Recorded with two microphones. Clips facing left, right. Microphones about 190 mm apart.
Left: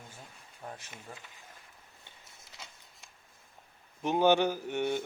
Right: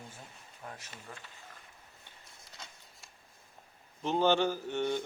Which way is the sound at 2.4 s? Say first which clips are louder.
Even; centre (ahead or behind).